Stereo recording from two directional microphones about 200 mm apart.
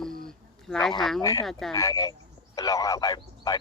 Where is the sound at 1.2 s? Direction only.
15° left (ahead or behind).